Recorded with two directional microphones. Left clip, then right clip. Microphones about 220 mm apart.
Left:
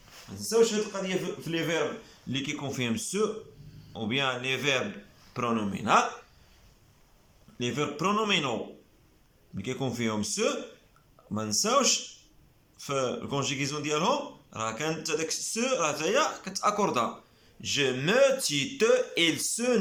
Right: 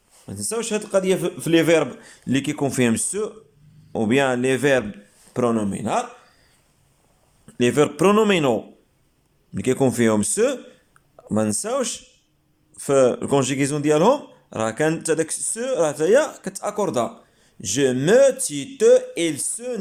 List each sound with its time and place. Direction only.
0.3 s a man's voice: 45° right (ahead or behind); by 6.1 s 25° right (ahead or behind)
7.6 s speech: 40° right (ahead or behind)
9.6 s speech: 40° right (ahead or behind)